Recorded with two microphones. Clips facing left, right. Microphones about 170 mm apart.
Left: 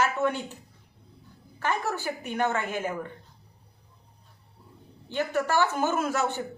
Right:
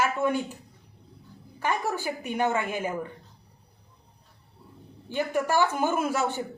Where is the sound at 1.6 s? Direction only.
10° right (ahead or behind).